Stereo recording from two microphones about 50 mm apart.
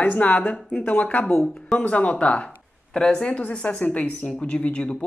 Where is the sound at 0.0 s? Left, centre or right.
Left.